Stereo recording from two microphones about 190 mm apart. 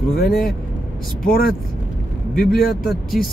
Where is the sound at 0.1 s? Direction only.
55° left (ahead or behind).